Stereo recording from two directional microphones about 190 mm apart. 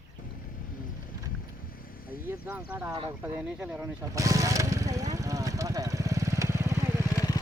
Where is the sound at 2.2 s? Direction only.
10° right (ahead or behind).